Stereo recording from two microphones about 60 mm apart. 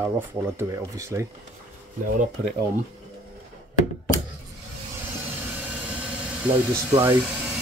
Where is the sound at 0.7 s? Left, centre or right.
Right.